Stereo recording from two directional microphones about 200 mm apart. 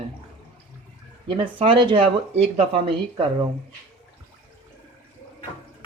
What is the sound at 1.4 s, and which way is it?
Speech, 25° right (ahead or behind).